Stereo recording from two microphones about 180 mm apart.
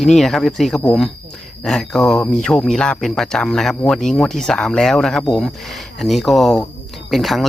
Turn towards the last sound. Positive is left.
turn(degrees=0)  # may be behind; listen again after turning